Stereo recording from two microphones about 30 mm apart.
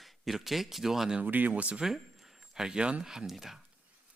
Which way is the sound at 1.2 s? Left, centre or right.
Right.